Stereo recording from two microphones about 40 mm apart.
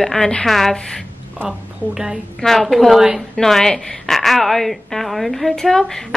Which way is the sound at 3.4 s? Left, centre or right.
Centre.